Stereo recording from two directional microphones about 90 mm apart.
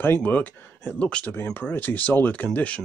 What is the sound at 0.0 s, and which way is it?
Speech, 20° left (ahead or behind).